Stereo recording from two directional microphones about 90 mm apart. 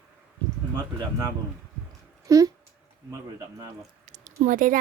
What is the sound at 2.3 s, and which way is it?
Speech, 40° right (ahead or behind).